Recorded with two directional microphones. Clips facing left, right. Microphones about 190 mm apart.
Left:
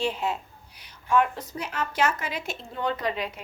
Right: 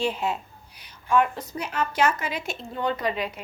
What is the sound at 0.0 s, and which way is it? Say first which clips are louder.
A woman's voice: right 1 dB; 10° right (ahead or behind).